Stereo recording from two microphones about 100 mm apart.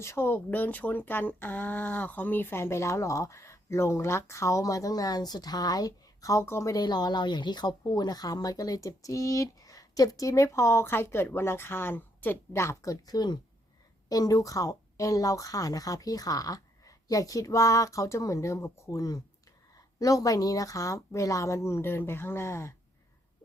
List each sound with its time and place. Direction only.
0.0 s speech: 25° left (ahead or behind)
6.8 s speech: 45° left (ahead or behind); by 22.7 s 25° left (ahead or behind)